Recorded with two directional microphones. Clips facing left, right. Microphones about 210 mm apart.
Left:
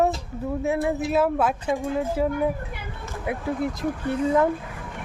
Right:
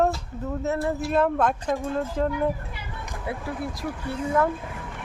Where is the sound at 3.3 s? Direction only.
20° left (ahead or behind).